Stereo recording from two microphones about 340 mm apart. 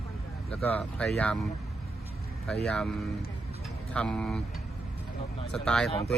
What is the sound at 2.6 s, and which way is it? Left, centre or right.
Speech, centre.